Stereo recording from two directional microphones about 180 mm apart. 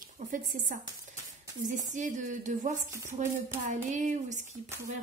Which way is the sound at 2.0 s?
45° right (ahead or behind).